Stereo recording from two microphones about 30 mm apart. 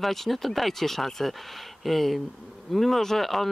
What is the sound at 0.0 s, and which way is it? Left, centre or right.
Speech, centre.